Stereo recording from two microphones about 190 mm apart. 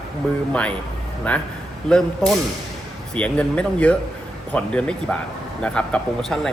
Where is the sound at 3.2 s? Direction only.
5° left (ahead or behind).